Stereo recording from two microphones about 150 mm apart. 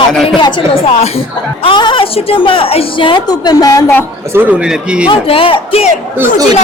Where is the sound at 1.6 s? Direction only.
30° left (ahead or behind).